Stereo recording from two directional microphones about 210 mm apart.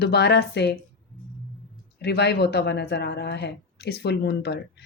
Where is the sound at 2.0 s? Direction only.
50° left (ahead or behind).